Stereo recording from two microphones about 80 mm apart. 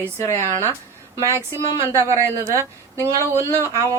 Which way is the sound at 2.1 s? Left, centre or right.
Right.